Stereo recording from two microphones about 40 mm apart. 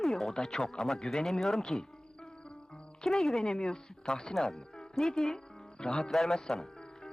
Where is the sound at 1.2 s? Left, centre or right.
Centre.